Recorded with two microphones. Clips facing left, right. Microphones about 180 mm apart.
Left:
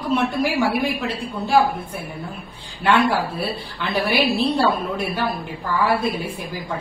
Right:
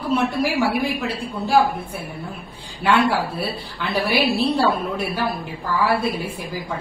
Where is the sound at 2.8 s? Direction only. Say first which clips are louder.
Even; centre (ahead or behind).